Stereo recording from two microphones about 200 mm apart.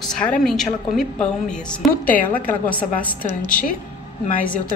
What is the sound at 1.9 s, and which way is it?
Speech, 45° left (ahead or behind).